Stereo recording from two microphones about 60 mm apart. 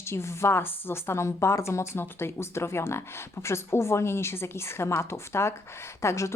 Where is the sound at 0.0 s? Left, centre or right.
Left.